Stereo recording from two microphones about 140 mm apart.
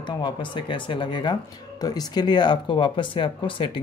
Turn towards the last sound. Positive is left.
turn(degrees=40)  # may be behind; listen again after turning